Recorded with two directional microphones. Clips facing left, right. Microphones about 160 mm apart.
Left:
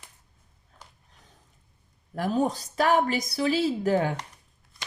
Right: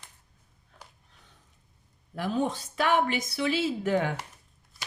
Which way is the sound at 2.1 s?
45° left (ahead or behind).